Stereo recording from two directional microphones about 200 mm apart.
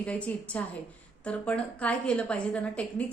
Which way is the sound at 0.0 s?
5° left (ahead or behind).